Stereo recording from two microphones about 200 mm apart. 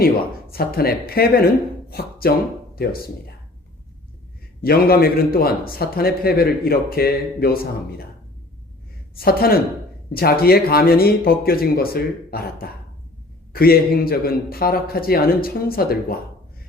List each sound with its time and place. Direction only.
0.5 s a man's voice: 50° left (ahead or behind)
4.6 s a man's voice: 50° left (ahead or behind)
9.2 s a man's voice: 50° left (ahead or behind)
13.5 s a man's voice: 50° left (ahead or behind)